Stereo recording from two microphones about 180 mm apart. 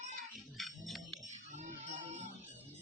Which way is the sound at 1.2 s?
40° right (ahead or behind).